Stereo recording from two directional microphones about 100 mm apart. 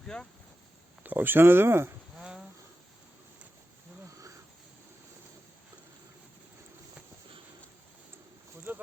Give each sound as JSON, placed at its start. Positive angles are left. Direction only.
{"t": 0.0, "sound": "speech", "side_deg": 5}
{"t": 1.0, "sound": "speech", "side_deg": -20}
{"t": 8.7, "sound": "a sound", "side_deg": -20}